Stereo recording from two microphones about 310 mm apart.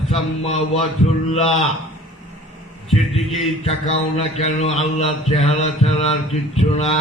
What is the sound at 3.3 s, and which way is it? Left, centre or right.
Mantra, centre.